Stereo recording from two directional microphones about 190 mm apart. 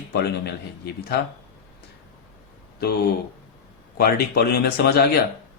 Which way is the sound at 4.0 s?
55° left (ahead or behind).